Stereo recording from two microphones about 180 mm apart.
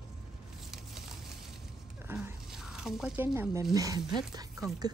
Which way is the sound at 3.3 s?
15° right (ahead or behind).